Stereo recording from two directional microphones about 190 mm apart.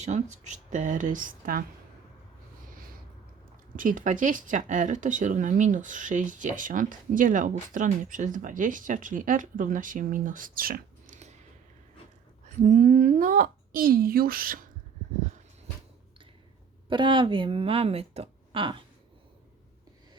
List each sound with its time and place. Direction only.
0.0 s speech: 40° right (ahead or behind)
3.8 s speech: 45° right (ahead or behind)
12.6 s speech: 40° right (ahead or behind)
16.9 s speech: 25° right (ahead or behind)